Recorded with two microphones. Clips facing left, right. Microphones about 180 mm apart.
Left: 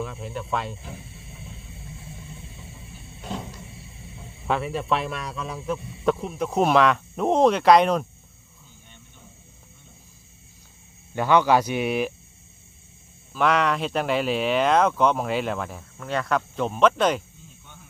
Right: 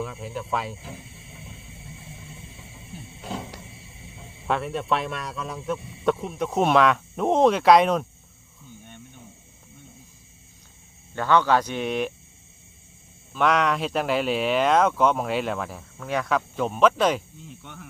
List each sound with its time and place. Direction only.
0.0 s speech: centre (ahead or behind)
3.2 s cupboard open or close: 5° right (ahead or behind)
4.4 s speech: centre (ahead or behind)
11.1 s speech: 15° left (ahead or behind)
13.3 s speech: centre (ahead or behind)
17.4 s cricket: 75° right (ahead or behind)